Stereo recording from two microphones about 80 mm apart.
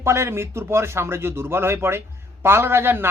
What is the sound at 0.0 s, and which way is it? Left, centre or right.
A man's voice, right.